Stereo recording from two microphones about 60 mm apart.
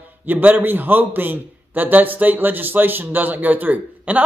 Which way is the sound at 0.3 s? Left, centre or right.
Right.